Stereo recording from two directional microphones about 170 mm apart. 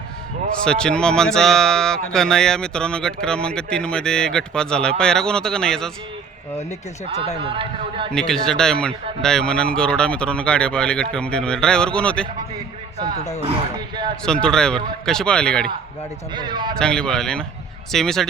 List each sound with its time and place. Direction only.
0.6 s speech: 5° left (ahead or behind)
7.3 s speech: 30° right (ahead or behind)
8.1 s speech: 5° left (ahead or behind)
13.4 s speech: 30° right (ahead or behind)
14.4 s speech: 5° left (ahead or behind)
16.3 s speech: 25° right (ahead or behind)
16.7 s speech: 5° left (ahead or behind)